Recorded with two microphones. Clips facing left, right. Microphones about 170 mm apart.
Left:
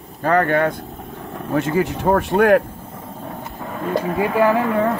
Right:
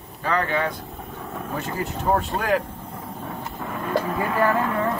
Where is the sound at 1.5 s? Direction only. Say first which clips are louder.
Left 11 dB; 90° left.